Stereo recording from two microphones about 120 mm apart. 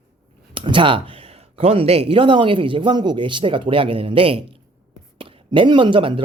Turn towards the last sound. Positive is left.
turn(degrees=-45)  # may be behind; listen again after turning